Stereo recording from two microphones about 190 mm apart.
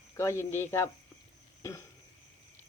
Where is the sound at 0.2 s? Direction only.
15° left (ahead or behind).